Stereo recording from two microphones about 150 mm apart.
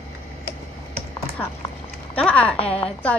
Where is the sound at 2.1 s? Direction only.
10° left (ahead or behind).